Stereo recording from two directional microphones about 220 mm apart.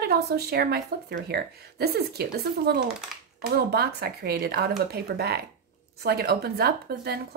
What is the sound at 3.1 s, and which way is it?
Speech, centre (ahead or behind).